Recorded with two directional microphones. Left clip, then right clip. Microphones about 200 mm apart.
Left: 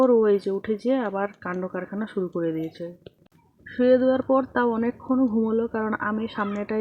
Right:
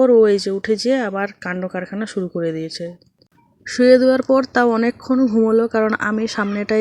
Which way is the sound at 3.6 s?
35° right (ahead or behind).